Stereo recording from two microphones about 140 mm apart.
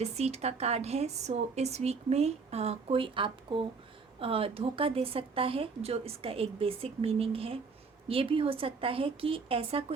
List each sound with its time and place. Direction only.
0.0 s a woman's voice: 50° right (ahead or behind)